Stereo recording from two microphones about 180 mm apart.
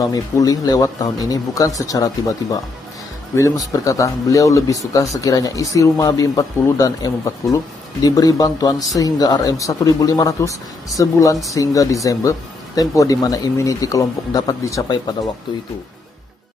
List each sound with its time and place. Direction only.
0.0 s speech: 20° left (ahead or behind)